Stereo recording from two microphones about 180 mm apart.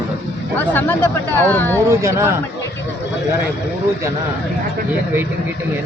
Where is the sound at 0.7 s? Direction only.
10° left (ahead or behind).